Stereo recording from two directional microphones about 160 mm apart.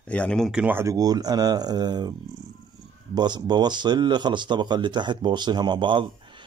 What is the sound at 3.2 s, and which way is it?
Speech, 25° right (ahead or behind).